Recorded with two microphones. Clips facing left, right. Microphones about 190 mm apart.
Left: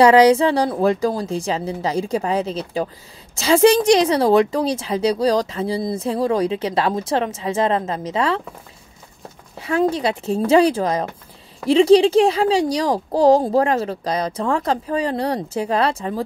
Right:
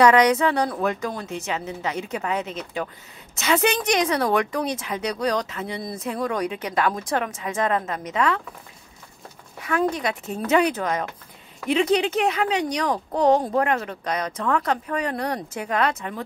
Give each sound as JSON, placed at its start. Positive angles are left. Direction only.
{"t": 0.0, "sound": "a woman's voice", "side_deg": 30}
{"t": 9.6, "sound": "a woman's voice", "side_deg": 25}